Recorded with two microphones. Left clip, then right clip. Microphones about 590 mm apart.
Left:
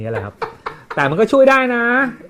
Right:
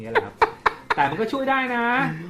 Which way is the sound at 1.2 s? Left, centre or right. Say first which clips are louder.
Left 11 dB; left.